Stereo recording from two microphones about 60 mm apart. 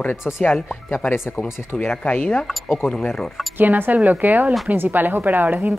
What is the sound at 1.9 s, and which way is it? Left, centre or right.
Speech, left.